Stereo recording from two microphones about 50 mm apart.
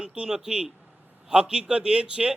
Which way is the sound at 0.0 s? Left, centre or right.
Centre.